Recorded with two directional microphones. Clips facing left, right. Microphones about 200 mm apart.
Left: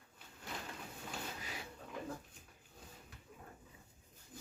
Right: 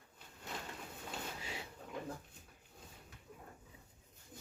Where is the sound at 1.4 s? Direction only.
25° right (ahead or behind).